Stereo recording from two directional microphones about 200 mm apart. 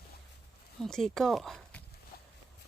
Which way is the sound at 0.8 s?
Centre (ahead or behind).